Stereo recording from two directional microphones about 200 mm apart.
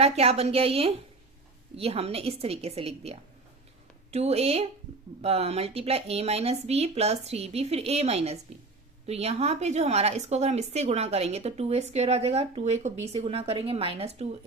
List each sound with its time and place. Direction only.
0.0 s a woman's voice: 30° right (ahead or behind)